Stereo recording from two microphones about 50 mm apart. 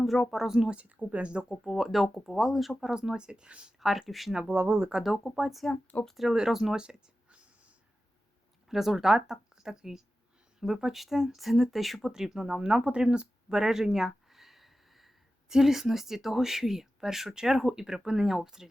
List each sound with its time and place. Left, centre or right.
0.0 s speech: centre
0.4 s speech: centre
0.8 s speech: right
1.6 s speech: centre
2.8 s speech: centre
3.8 s speech: centre
4.4 s speech: right
5.0 s speech: centre
5.7 s speech: left
6.3 s speech: centre
6.7 s a sound: right
8.6 s speech: centre